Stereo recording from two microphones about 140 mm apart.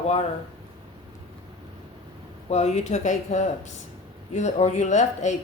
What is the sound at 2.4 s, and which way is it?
Speech, 50° left (ahead or behind).